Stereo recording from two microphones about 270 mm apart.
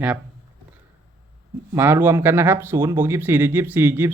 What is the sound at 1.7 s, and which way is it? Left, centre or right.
Speech, centre.